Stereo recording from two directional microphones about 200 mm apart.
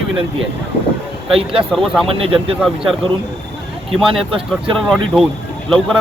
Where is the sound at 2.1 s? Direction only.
30° right (ahead or behind).